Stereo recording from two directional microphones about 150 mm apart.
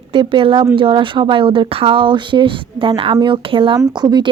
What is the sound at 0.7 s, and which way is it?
Speech, 35° right (ahead or behind).